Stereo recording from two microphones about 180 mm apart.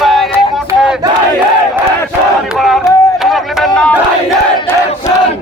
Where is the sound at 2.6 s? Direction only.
Centre (ahead or behind).